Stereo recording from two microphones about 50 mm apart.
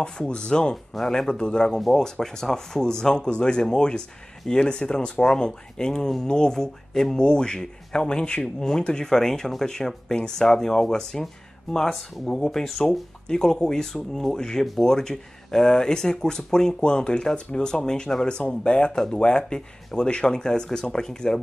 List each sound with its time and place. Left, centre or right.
0.3 s speech: centre